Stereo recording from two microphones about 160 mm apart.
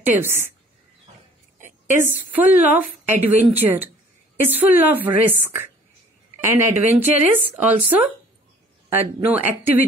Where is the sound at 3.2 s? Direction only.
10° right (ahead or behind).